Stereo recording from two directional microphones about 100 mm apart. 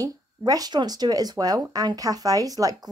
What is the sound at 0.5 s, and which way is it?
Speech, 40° right (ahead or behind).